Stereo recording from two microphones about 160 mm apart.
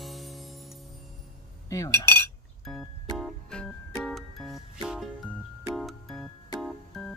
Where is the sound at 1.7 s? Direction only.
20° left (ahead or behind).